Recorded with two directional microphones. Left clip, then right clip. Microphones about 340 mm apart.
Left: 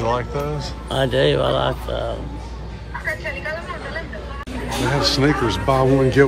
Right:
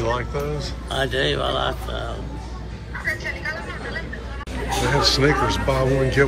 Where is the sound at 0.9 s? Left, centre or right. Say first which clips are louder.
Left 4 dB; left.